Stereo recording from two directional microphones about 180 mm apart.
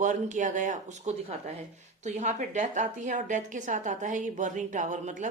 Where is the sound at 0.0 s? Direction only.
45° right (ahead or behind).